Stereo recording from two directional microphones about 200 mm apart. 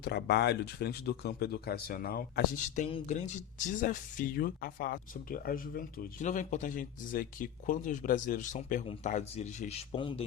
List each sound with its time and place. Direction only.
0.0 s speech: 55° left (ahead or behind)
2.8 s speech: 35° left (ahead or behind)